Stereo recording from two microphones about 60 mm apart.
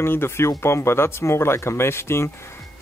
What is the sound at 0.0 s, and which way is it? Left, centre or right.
Speech, left.